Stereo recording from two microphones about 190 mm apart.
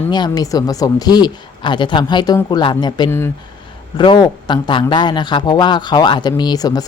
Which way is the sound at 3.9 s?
25° left (ahead or behind).